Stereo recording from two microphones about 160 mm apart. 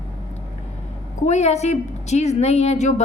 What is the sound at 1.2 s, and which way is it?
A woman's voice, 45° left (ahead or behind).